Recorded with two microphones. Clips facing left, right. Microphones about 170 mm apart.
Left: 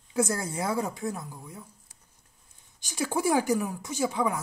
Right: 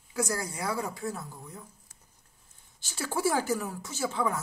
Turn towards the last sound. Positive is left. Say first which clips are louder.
# left 3 dB
turn(degrees=15)  # may be behind; listen again after turning